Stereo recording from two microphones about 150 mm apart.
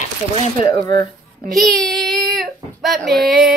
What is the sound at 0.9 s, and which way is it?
Speech, 70° right (ahead or behind).